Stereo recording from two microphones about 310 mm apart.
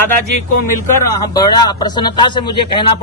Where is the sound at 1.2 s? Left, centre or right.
Centre.